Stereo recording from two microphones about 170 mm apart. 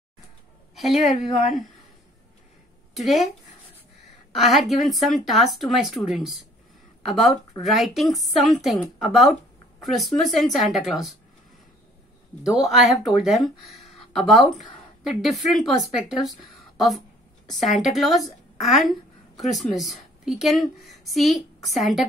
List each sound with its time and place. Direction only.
0.7 s a woman's voice: centre (ahead or behind)
1.3 s a woman's voice: 45° left (ahead or behind)
2.9 s speech: centre (ahead or behind)
4.3 s a woman's voice: centre (ahead or behind)
12.5 s a woman's voice: centre (ahead or behind)